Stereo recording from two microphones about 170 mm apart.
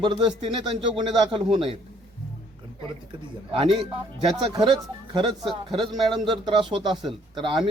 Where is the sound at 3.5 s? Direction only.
30° right (ahead or behind).